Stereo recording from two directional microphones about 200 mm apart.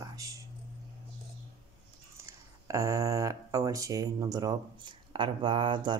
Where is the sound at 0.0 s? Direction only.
15° right (ahead or behind).